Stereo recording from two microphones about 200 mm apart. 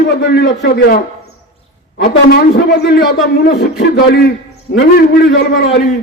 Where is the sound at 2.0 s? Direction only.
50° left (ahead or behind).